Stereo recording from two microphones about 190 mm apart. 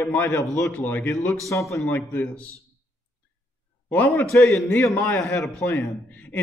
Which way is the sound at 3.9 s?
10° left (ahead or behind).